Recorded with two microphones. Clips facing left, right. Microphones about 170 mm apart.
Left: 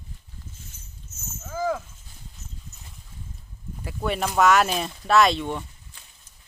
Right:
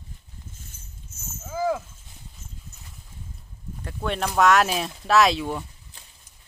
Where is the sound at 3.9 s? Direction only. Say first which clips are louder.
Left 1 dB; 5° left (ahead or behind).